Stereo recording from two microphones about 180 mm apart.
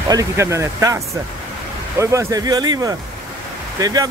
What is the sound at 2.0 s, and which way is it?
Speech, 15° right (ahead or behind).